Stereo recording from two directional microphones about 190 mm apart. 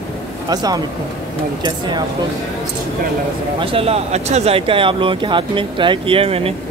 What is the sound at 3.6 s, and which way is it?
Speech, 30° right (ahead or behind).